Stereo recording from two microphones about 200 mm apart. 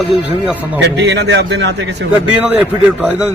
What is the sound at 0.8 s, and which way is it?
A man's voice, 60° right (ahead or behind).